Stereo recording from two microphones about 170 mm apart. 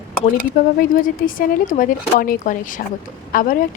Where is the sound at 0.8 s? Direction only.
55° left (ahead or behind).